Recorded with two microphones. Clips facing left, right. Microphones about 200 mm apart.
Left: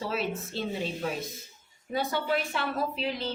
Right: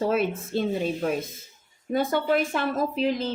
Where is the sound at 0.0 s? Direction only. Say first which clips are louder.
Right 7 dB; 50° right (ahead or behind).